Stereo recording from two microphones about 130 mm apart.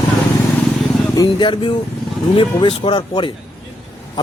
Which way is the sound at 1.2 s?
40° left (ahead or behind).